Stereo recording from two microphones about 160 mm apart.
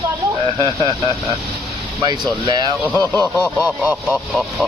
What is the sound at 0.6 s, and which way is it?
Speech, 30° left (ahead or behind).